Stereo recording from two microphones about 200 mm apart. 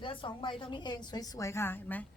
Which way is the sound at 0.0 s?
25° left (ahead or behind).